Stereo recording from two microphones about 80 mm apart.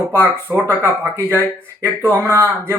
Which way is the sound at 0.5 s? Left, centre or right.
Right.